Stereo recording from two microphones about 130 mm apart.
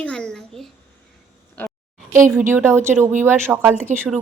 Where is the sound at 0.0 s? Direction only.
5° left (ahead or behind).